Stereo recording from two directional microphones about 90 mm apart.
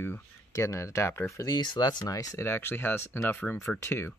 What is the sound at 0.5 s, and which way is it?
Speech, 35° left (ahead or behind).